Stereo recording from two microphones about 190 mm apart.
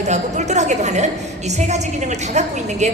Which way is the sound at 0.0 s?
35° right (ahead or behind).